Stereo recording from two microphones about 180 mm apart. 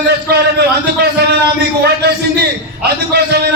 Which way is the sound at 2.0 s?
60° right (ahead or behind).